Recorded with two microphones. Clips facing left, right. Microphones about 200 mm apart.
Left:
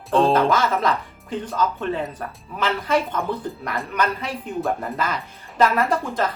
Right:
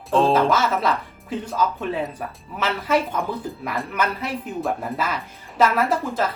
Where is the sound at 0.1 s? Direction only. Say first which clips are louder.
Even; centre (ahead or behind).